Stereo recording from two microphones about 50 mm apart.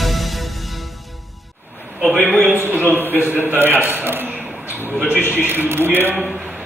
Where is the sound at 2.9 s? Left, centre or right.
Left.